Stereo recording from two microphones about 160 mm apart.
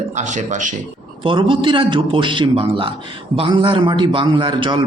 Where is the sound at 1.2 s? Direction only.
30° right (ahead or behind).